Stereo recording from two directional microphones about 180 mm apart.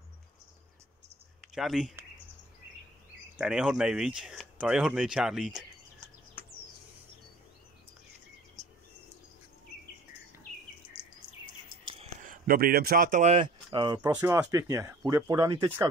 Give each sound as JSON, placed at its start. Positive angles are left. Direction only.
{"t": 1.5, "sound": "speech", "side_deg": 0}
{"t": 3.3, "sound": "speech", "side_deg": -5}
{"t": 12.2, "sound": "speech", "side_deg": -50}